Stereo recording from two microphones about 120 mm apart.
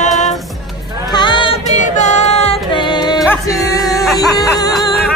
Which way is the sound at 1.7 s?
90° left.